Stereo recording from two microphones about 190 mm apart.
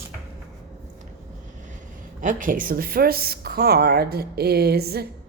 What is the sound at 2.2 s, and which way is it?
Speech, 45° right (ahead or behind).